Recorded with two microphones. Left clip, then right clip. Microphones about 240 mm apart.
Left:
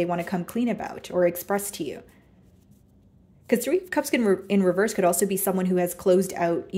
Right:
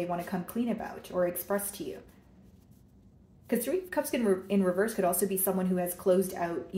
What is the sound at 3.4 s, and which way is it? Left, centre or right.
Speech, left.